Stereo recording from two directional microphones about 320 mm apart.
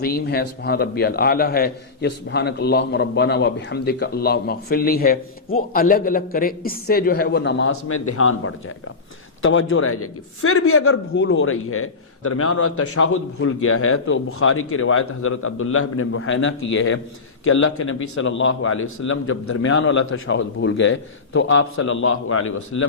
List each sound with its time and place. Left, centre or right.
0.0 s a man's voice: left